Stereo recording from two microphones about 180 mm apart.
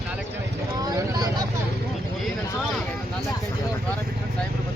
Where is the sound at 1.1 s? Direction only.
20° right (ahead or behind).